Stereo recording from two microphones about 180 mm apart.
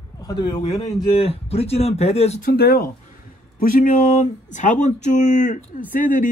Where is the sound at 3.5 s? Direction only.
45° left (ahead or behind).